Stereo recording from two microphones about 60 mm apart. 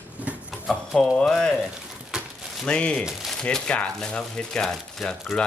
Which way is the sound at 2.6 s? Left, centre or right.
Centre.